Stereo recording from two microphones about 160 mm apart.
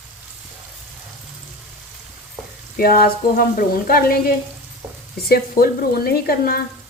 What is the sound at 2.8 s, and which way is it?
Speech, 65° left (ahead or behind).